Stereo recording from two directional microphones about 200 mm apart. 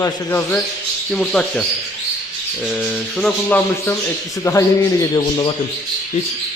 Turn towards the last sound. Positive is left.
turn(degrees=20)  # may be behind; listen again after turning